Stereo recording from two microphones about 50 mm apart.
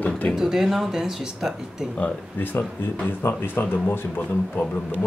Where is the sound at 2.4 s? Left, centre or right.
Left.